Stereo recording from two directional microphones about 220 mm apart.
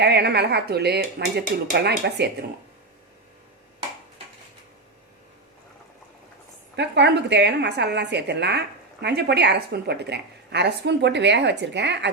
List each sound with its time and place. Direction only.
0.0 s a woman's voice: 45° right (ahead or behind)
6.7 s a woman's voice: 50° right (ahead or behind)